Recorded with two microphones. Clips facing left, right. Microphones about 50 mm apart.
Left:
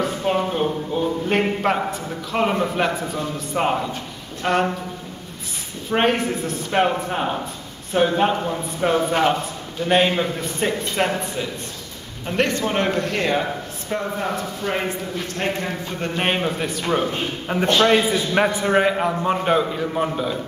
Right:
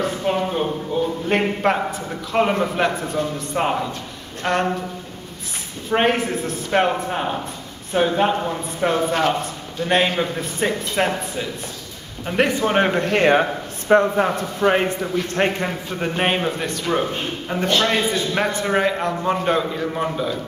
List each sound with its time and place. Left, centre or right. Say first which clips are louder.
0.0 s a man's voice: even; centre
5.9 s a man's voice: right 1 dB; centre; by 14.9 s right
15.3 s a man's voice: right 3 dB; right
16.0 s a man's voice: right 2 dB; centre
17.5 s a man's voice: left 3 dB; centre